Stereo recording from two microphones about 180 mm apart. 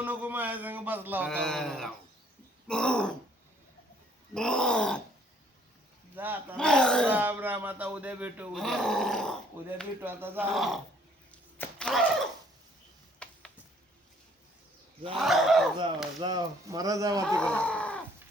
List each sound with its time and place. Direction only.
0.0 s speech: 10° right (ahead or behind)
1.3 s growling: 5° left (ahead or behind)
4.4 s growling: 5° left (ahead or behind)
6.1 s speech: 10° right (ahead or behind)
6.6 s growling: 5° left (ahead or behind)
7.1 s speech: 10° right (ahead or behind)
8.5 s growling: centre (ahead or behind)
10.0 s speech: 10° right (ahead or behind)
10.5 s growling: centre (ahead or behind)
11.3 s a sound: 10° left (ahead or behind)
15.1 s growling: centre (ahead or behind)
16.2 s speech: 20° right (ahead or behind)
17.2 s speech: 5° left (ahead or behind)